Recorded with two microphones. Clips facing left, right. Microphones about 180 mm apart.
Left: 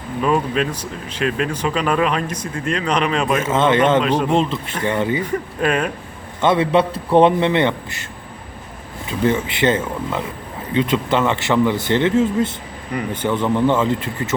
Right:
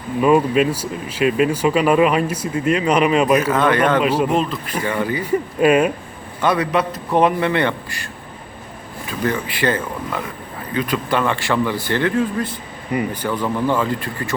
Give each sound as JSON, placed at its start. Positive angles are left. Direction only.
{"t": 0.2, "sound": "speech", "side_deg": -10}
{"t": 3.4, "sound": "speech", "side_deg": 25}
{"t": 4.0, "sound": "speech", "side_deg": -5}
{"t": 4.3, "sound": "speech", "side_deg": 25}
{"t": 5.2, "sound": "speech", "side_deg": -10}
{"t": 6.4, "sound": "speech", "side_deg": 25}
{"t": 9.0, "sound": "speech", "side_deg": 25}
{"t": 12.9, "sound": "speech", "side_deg": -10}
{"t": 13.2, "sound": "speech", "side_deg": 25}